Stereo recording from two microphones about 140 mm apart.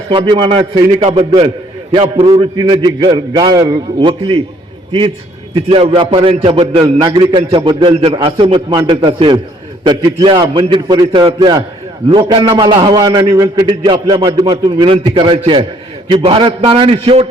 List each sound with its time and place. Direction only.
0.1 s a man's voice: 35° right (ahead or behind)
2.3 s a man's voice: 35° right (ahead or behind)